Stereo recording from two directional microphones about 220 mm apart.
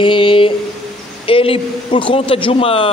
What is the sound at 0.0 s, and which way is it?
Speech, 25° left (ahead or behind).